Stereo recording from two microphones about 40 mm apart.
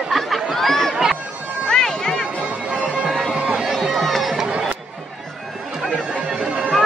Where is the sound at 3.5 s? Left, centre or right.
Centre.